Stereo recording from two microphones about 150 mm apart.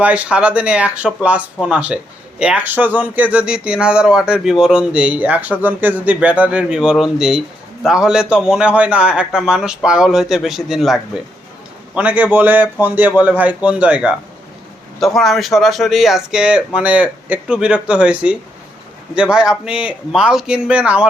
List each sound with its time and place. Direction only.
0.0 s speech: 10° right (ahead or behind)